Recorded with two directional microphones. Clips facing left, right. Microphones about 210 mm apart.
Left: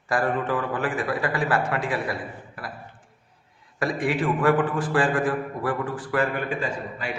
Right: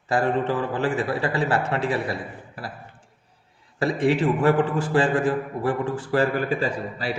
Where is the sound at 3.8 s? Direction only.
25° right (ahead or behind).